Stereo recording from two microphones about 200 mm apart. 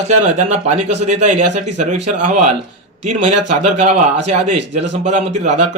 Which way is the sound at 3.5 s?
35° right (ahead or behind).